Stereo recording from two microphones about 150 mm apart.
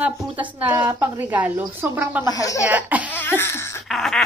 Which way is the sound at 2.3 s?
20° left (ahead or behind).